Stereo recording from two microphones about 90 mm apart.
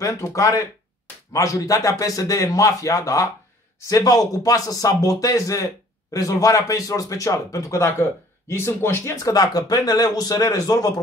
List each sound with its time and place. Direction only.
0.0 s a man's voice: 35° left (ahead or behind)